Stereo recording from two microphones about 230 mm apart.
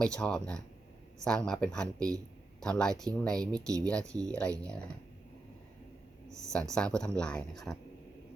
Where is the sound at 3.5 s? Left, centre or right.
Centre.